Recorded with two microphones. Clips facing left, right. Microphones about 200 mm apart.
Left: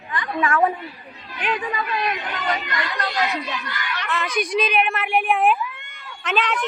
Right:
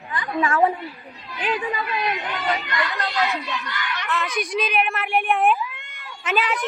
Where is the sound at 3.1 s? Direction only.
20° left (ahead or behind).